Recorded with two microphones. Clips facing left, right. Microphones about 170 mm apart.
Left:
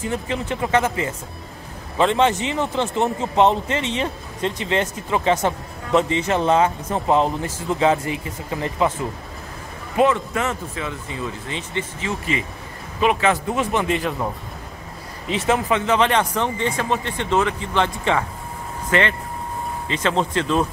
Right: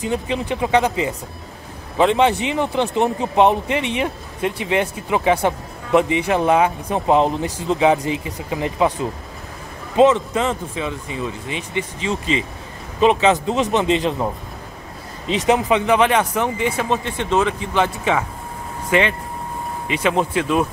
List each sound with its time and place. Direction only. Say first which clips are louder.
0.0 s a man's voice: right 3 dB; 15° right (ahead or behind)